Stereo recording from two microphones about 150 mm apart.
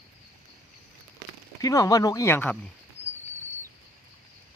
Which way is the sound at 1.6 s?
20° left (ahead or behind).